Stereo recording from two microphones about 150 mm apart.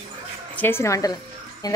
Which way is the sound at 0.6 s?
15° left (ahead or behind).